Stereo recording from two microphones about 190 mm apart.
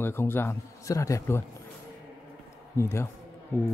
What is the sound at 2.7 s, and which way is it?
Speech, 15° left (ahead or behind).